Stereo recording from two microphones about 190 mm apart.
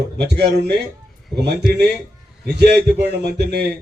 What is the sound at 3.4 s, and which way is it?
Speech, 55° right (ahead or behind).